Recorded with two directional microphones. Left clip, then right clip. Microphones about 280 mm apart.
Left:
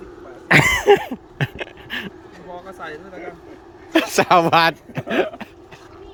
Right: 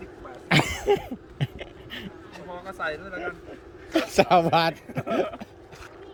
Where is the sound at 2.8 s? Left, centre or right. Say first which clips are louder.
Right 2 dB; centre.